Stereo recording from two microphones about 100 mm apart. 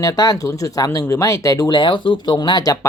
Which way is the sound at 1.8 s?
55° left (ahead or behind).